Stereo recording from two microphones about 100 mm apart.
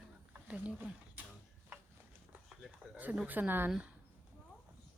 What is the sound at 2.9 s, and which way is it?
Speech, 15° right (ahead or behind).